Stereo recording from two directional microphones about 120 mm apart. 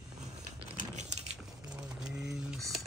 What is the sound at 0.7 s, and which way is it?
Crumpling, 75° right (ahead or behind).